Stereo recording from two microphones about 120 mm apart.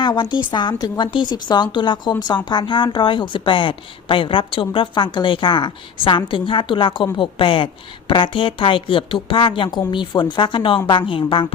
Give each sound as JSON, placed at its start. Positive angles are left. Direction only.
{"t": 0.0, "sound": "a woman's voice", "side_deg": 40}